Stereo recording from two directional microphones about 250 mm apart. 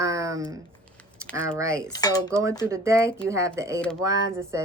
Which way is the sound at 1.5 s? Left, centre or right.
Centre.